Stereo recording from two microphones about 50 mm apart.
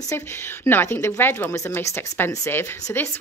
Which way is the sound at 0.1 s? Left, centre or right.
Left.